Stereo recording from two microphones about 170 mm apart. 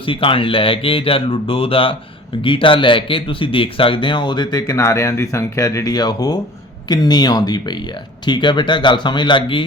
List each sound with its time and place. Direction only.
0.0 s speech: 30° left (ahead or behind)